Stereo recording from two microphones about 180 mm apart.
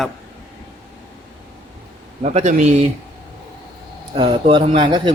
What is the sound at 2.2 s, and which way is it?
Speech, 40° right (ahead or behind).